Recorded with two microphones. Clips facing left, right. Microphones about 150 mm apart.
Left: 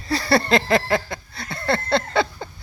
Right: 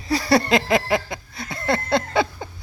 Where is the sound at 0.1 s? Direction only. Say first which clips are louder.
Right 1 dB; 15° right (ahead or behind).